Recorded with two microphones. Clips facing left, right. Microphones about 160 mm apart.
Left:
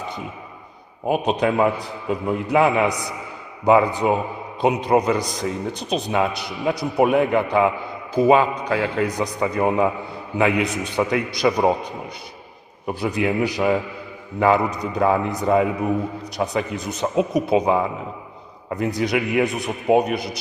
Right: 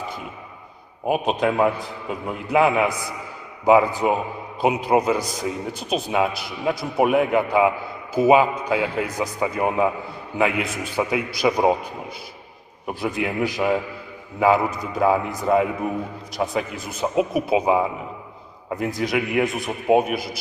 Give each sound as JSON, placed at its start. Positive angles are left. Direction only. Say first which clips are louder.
{"t": 1.0, "sound": "a man's voice", "louder": "left 1 dB", "side_deg": 0}
{"t": 12.9, "sound": "a man's voice", "louder": "left 3 dB", "side_deg": 0}